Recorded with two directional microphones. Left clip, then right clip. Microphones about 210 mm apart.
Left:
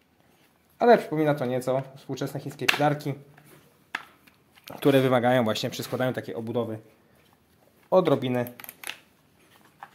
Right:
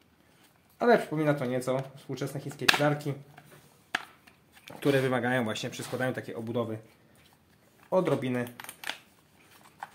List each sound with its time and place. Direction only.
0.7 s speech: 30° left (ahead or behind)
4.6 s speech: 45° left (ahead or behind)
6.4 s speech: 15° left (ahead or behind)
7.9 s speech: 35° left (ahead or behind)